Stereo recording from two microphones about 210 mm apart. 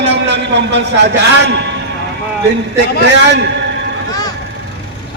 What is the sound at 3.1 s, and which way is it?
Speech, 55° right (ahead or behind).